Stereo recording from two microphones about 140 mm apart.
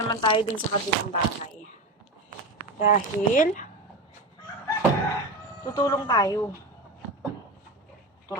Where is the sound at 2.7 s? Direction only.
70° left (ahead or behind).